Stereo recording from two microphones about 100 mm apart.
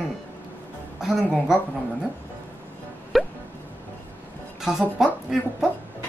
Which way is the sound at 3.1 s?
Centre (ahead or behind).